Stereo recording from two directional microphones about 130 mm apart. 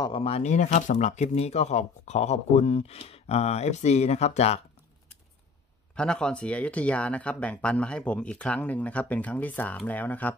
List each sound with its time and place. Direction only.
0.2 s speech: 55° left (ahead or behind)
5.9 s speech: 5° left (ahead or behind)